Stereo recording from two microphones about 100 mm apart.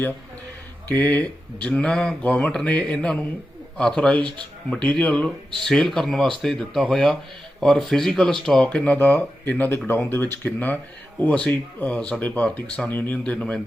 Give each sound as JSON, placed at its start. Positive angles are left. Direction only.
{"t": 0.9, "sound": "speech", "side_deg": 15}